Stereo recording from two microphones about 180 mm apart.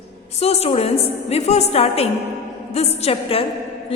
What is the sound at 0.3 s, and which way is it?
A woman's voice, 35° left (ahead or behind).